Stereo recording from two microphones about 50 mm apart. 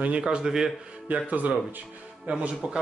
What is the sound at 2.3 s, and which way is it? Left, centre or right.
Speech, centre.